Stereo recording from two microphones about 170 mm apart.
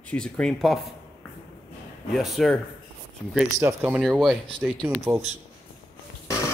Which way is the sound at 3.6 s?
15° right (ahead or behind).